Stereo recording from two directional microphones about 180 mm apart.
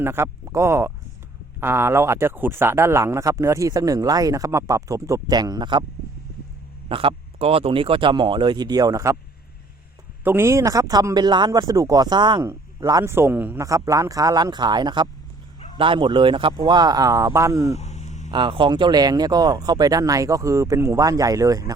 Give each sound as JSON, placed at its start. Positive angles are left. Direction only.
{"t": 0.0, "sound": "speech", "side_deg": -15}
{"t": 6.8, "sound": "speech", "side_deg": -30}
{"t": 10.2, "sound": "speech", "side_deg": -15}
{"t": 17.7, "sound": "a sound", "side_deg": 40}
{"t": 18.3, "sound": "speech", "side_deg": -25}